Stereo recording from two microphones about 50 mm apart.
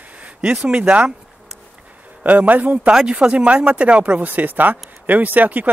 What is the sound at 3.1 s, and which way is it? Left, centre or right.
Speech, right.